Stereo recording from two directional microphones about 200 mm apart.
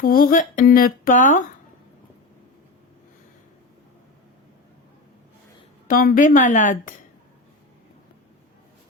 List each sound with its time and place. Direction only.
0.0 s speech: 45° left (ahead or behind)
5.9 s a woman's voice: 45° left (ahead or behind)